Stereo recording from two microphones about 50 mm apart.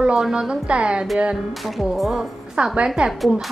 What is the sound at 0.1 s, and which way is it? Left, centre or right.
Speech, centre.